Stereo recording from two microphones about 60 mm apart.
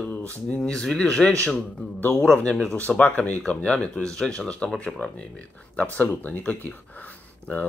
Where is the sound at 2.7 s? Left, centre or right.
Left.